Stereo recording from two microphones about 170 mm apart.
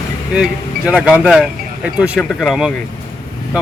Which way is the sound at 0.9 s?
5° right (ahead or behind).